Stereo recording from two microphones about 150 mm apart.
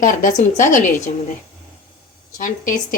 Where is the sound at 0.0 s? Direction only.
60° left (ahead or behind).